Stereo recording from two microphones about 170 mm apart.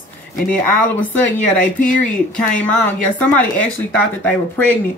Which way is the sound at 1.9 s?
5° left (ahead or behind).